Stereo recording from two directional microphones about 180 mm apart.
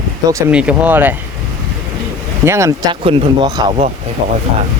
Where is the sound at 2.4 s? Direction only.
15° right (ahead or behind).